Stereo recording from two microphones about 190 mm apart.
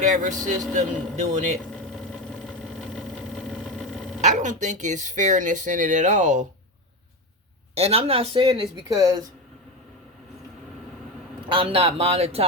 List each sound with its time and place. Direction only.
0.0 s speech: 40° right (ahead or behind)
1.7 s vehicle: 5° left (ahead or behind)
4.2 s speech: 40° right (ahead or behind)
7.8 s speech: 35° right (ahead or behind); by 9.2 s 20° right (ahead or behind)
11.4 s speech: 30° right (ahead or behind)